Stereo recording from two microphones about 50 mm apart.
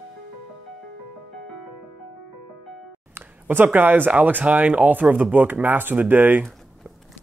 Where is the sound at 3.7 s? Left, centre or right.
Right.